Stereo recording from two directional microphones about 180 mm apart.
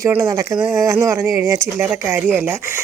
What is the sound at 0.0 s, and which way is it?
Speech, 15° right (ahead or behind).